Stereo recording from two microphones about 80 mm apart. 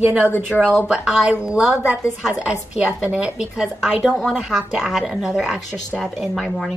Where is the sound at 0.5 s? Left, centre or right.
Centre.